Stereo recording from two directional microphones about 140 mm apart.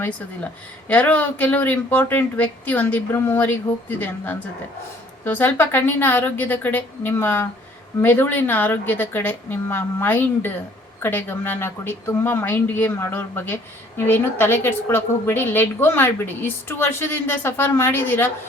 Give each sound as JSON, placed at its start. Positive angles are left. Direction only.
{"t": 0.9, "sound": "a woman's voice", "side_deg": 10}